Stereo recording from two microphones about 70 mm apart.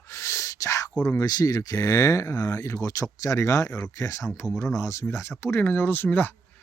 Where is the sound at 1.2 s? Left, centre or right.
Left.